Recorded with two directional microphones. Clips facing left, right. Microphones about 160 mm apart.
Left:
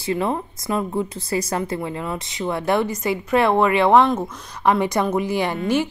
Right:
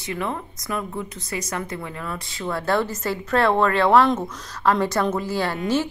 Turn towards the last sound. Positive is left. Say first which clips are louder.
# left 2 dB
turn(degrees=15)  # may be behind; listen again after turning